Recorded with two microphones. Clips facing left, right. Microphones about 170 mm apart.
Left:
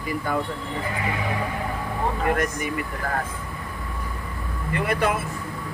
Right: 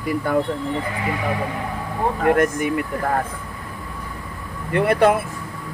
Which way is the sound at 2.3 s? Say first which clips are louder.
Right 10 dB; 55° right (ahead or behind).